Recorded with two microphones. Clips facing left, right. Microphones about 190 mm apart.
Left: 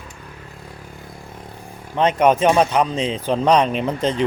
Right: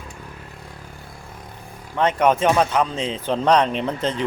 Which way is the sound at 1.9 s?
20° left (ahead or behind).